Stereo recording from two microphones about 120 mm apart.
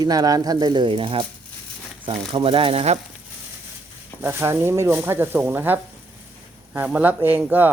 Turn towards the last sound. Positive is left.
turn(degrees=-15)  # may be behind; listen again after turning